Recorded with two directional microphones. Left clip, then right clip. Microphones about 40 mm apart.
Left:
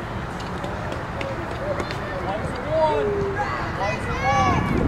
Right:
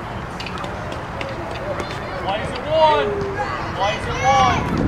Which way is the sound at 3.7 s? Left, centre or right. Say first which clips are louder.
Right 4 dB; centre.